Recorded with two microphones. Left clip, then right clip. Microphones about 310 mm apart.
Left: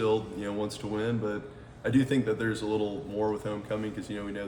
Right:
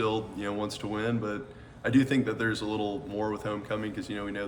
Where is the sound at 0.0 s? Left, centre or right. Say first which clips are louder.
Left 2 dB; centre.